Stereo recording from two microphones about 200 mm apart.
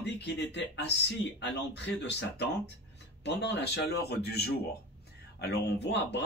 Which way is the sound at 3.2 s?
55° left (ahead or behind).